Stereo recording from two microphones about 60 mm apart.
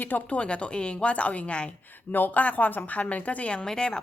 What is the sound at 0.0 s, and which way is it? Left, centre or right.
Speech, left.